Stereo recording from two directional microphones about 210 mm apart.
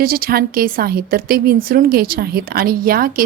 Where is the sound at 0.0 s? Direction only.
45° right (ahead or behind).